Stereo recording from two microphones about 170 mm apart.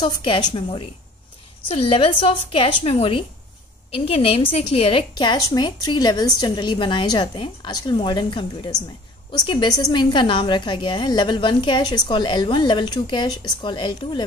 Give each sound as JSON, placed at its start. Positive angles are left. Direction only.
{"t": 0.0, "sound": "a woman's voice", "side_deg": 30}